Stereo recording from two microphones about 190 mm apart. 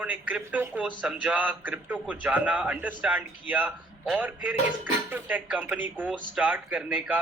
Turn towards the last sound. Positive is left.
turn(degrees=-5)  # may be behind; listen again after turning